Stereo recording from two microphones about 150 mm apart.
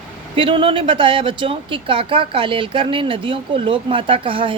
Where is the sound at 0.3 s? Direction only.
35° right (ahead or behind).